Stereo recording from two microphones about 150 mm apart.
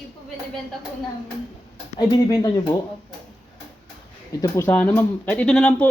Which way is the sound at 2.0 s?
25° left (ahead or behind).